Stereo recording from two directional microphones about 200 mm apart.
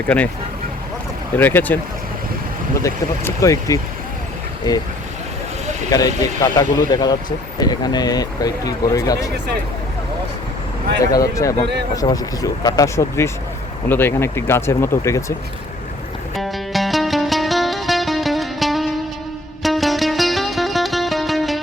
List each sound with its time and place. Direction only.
1.4 s speech: 10° left (ahead or behind)
2.8 s speech: 15° left (ahead or behind)
5.9 s speech: 20° left (ahead or behind)
11.0 s speech: 15° left (ahead or behind)
16.3 s music: centre (ahead or behind)